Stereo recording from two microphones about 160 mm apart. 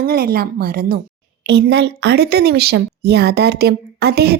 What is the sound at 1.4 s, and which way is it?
A woman's voice, 90° right.